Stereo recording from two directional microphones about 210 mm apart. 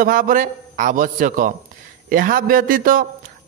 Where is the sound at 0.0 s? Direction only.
40° right (ahead or behind).